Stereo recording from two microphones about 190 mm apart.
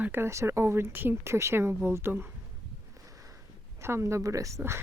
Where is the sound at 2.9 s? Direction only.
15° right (ahead or behind).